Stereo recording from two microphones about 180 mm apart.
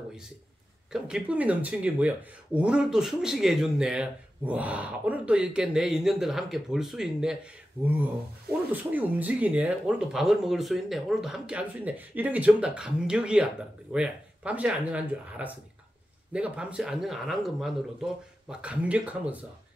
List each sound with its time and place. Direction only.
0.9 s speech: 5° right (ahead or behind)